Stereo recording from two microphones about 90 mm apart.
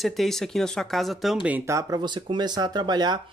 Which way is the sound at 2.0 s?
55° right (ahead or behind).